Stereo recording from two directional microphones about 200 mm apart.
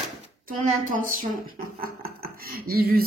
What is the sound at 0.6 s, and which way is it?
A woman's voice, 40° right (ahead or behind).